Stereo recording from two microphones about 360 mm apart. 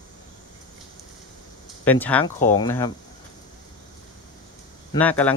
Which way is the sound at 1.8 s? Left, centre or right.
Centre.